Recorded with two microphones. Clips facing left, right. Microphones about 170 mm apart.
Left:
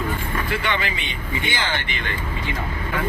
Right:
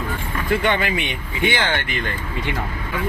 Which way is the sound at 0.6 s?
50° right (ahead or behind).